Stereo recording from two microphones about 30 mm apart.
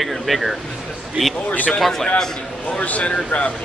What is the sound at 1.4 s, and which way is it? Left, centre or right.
Speech, left.